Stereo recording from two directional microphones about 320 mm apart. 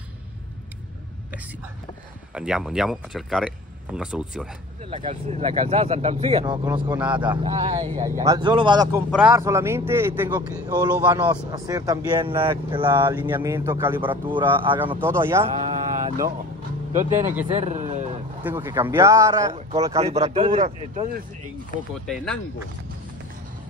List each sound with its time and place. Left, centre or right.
2.3 s speech: centre
4.9 s a man's voice: centre
7.2 s a man's voice: centre
17.5 s a sound: right
18.4 s a man's voice: centre
22.0 s speech: centre